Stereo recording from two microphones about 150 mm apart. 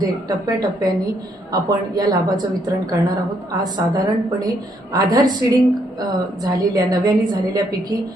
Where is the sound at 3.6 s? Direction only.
30° right (ahead or behind).